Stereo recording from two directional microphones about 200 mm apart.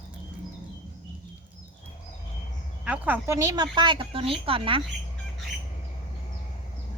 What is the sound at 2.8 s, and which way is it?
Speech, 5° right (ahead or behind).